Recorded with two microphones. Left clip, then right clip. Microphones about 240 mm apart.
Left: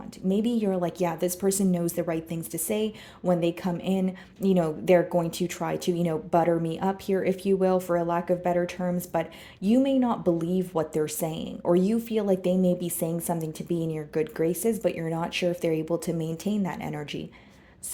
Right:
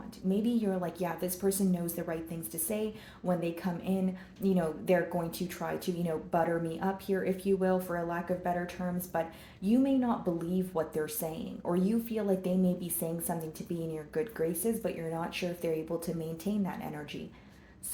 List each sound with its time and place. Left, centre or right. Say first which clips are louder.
0.3 s a woman's voice: left 5 dB; left